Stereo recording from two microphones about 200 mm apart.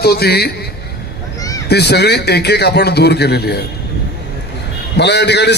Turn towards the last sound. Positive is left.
turn(degrees=60)  # may be behind; listen again after turning